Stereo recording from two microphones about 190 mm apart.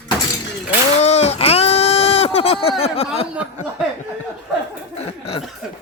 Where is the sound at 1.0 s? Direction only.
35° left (ahead or behind).